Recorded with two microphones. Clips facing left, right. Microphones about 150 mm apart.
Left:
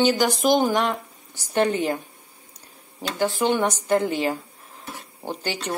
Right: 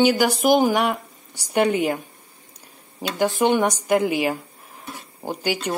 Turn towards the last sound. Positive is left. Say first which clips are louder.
# right 4 dB
turn(degrees=-10)  # may be behind; listen again after turning